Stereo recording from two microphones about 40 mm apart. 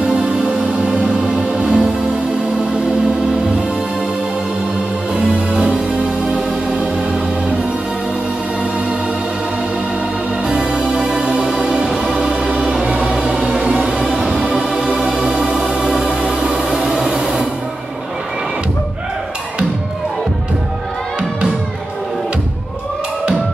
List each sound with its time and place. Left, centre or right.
0.0 s music: centre
1.0 s music: centre
5.1 s music: right
10.4 s music: centre
12.2 s music: right
15.6 s organ: centre
16.7 s a sound: centre